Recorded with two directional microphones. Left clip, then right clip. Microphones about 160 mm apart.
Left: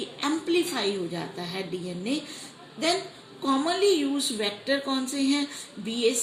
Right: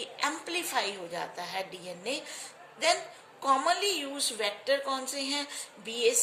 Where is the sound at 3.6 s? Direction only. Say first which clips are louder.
Left 5 dB; 30° left (ahead or behind).